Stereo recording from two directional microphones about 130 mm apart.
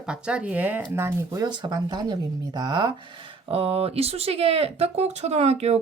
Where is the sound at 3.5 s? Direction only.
45° right (ahead or behind).